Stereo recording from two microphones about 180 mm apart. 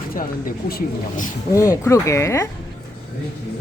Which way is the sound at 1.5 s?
15° left (ahead or behind).